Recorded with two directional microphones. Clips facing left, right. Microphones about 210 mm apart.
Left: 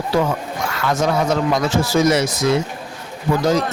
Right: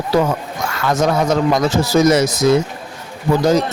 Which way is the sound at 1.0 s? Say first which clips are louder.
Right 3 dB; 40° right (ahead or behind).